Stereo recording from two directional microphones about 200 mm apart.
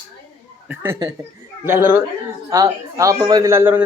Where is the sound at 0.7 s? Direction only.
10° right (ahead or behind).